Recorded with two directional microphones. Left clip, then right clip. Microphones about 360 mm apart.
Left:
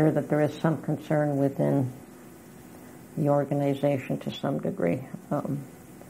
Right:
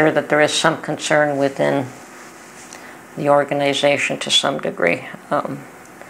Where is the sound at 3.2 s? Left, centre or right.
Centre.